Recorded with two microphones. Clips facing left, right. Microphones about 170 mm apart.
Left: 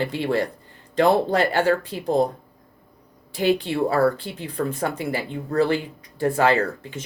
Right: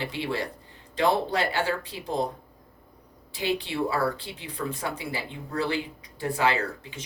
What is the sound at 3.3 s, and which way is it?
Speech, 50° left (ahead or behind).